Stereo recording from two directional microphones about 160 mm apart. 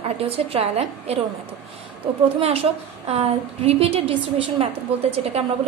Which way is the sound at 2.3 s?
40° right (ahead or behind).